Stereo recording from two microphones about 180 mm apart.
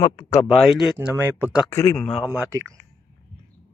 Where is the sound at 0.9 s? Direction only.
15° right (ahead or behind).